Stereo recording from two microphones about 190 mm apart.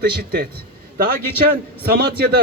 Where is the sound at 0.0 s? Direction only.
55° right (ahead or behind).